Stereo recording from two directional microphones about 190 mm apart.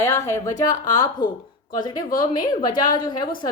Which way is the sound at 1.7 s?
20° left (ahead or behind).